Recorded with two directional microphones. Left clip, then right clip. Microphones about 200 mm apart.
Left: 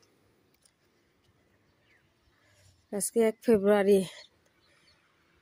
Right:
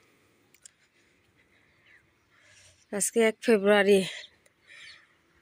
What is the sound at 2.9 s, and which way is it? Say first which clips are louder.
Speech: right 2 dB; 10° left (ahead or behind).